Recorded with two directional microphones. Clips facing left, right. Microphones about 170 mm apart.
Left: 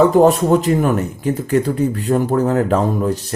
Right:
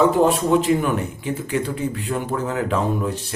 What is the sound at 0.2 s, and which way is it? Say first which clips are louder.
Speech: left 5 dB; 40° left (ahead or behind).